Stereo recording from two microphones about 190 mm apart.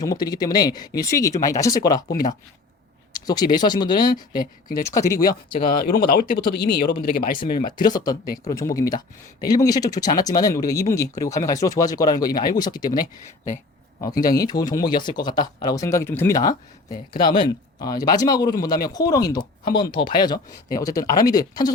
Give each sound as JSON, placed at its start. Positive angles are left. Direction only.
{"t": 0.0, "sound": "speech", "side_deg": 20}
{"t": 5.5, "sound": "speech", "side_deg": 50}
{"t": 7.8, "sound": "speech", "side_deg": 20}
{"t": 16.9, "sound": "speech", "side_deg": 50}
{"t": 17.2, "sound": "speech", "side_deg": 25}
{"t": 19.6, "sound": "speech", "side_deg": 50}
{"t": 20.0, "sound": "speech", "side_deg": 25}